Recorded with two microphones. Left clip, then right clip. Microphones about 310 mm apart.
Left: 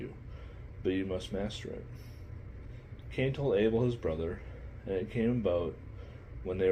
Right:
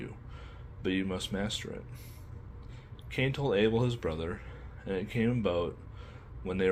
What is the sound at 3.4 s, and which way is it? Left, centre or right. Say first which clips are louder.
Speech: even; right.